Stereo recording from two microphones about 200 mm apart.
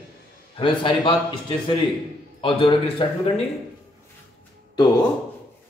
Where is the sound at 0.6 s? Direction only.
25° left (ahead or behind).